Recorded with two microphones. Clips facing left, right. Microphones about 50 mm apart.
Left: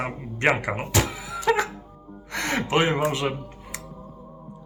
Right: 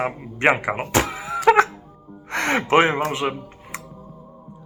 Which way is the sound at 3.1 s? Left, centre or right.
Centre.